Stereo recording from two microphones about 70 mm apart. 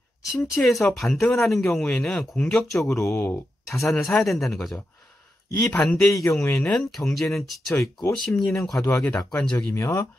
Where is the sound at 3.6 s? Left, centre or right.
Centre.